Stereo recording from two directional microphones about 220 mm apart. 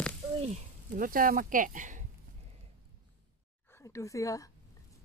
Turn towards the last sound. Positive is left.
turn(degrees=15)  # may be behind; listen again after turning